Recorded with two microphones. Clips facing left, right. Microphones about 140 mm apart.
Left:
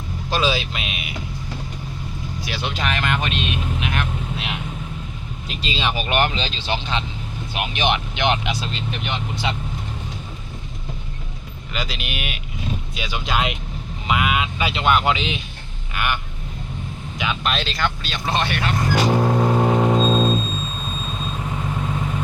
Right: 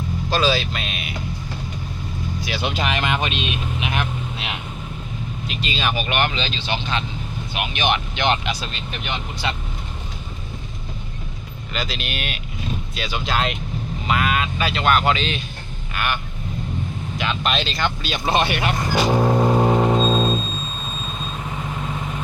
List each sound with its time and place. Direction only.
0.3 s speech: 20° left (ahead or behind)
2.4 s speech: centre (ahead or behind)
5.5 s speech: 30° left (ahead or behind)
11.7 s speech: 10° left (ahead or behind)
17.4 s speech: centre (ahead or behind)
18.1 s vehicle: 10° right (ahead or behind)